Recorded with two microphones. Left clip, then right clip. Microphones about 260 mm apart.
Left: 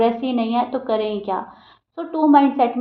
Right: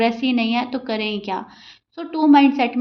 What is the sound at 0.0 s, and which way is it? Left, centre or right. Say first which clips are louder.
A woman's voice: even; right.